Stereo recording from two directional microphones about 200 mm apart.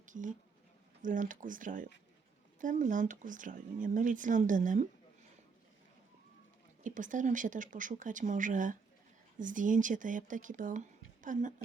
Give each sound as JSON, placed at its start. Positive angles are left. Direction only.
{"t": 0.0, "sound": "a sound", "side_deg": -40}
{"t": 1.0, "sound": "speech", "side_deg": -40}
{"t": 6.8, "sound": "speech", "side_deg": -40}